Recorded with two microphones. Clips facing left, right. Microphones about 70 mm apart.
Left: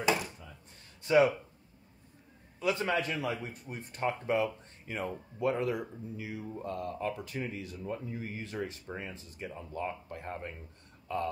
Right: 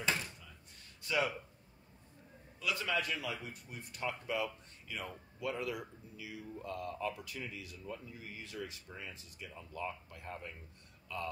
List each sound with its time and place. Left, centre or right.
0.0 s a sound: centre
1.0 s speech: left
2.6 s speech: left